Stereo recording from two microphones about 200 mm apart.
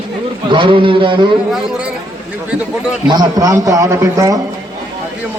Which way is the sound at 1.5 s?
Centre (ahead or behind).